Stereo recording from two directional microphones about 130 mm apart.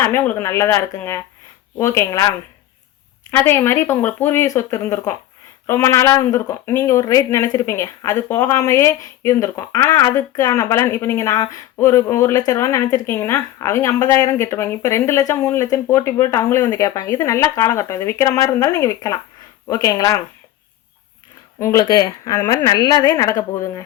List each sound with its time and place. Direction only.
0.0 s speech: 15° left (ahead or behind)
3.3 s speech: 15° left (ahead or behind)
21.6 s speech: 25° left (ahead or behind)